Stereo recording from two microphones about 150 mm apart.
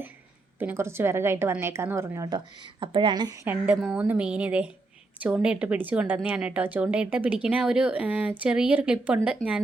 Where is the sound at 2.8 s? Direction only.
35° right (ahead or behind).